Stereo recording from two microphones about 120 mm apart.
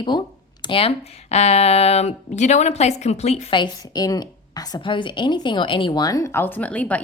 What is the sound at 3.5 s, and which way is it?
Speech, 35° left (ahead or behind).